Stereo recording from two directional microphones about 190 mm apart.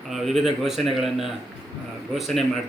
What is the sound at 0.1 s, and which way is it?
Speech, centre (ahead or behind).